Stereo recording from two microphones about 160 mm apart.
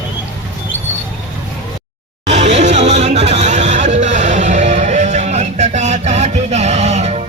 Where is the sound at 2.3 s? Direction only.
45° right (ahead or behind).